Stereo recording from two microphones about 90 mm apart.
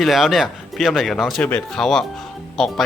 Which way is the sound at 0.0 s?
Centre (ahead or behind).